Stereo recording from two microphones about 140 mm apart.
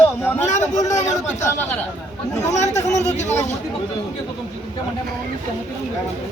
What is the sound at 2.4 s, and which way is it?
Chatter, 55° left (ahead or behind).